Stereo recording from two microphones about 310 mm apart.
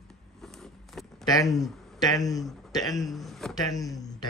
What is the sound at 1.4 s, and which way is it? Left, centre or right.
Speech, centre.